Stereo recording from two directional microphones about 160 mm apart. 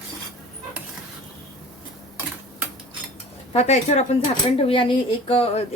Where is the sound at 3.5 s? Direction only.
45° left (ahead or behind).